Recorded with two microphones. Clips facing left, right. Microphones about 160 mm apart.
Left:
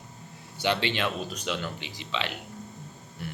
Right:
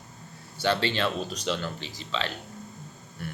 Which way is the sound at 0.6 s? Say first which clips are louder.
Right 1 dB; 20° left (ahead or behind).